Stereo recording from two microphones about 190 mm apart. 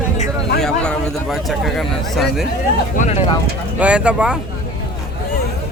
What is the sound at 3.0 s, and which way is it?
Speech, 40° left (ahead or behind).